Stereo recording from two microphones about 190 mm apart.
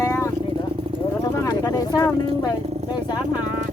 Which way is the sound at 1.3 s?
20° left (ahead or behind).